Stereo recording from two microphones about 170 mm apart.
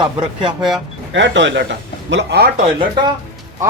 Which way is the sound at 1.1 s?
90° right.